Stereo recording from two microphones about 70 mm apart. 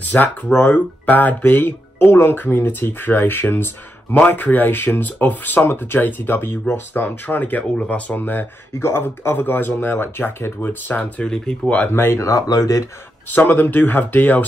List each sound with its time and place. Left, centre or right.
0.0 s speech: left
11.3 s speech: centre
11.7 s speech: left
13.3 s speech: left